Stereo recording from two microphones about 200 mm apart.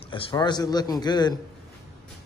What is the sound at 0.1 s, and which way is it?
A man's voice, 25° left (ahead or behind).